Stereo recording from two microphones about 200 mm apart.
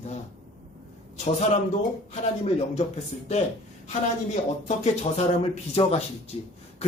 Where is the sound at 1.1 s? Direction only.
30° left (ahead or behind).